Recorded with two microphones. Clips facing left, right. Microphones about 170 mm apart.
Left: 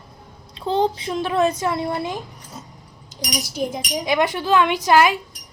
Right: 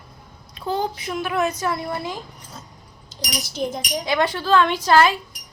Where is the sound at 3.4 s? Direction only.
10° left (ahead or behind).